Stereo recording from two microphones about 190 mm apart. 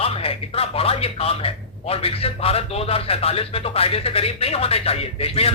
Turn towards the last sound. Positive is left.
turn(degrees=30)  # may be behind; listen again after turning